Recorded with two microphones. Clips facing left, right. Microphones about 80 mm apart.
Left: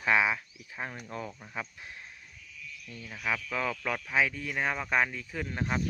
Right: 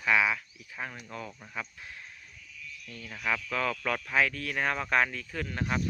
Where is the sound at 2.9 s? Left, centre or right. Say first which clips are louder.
Right 1 dB; centre.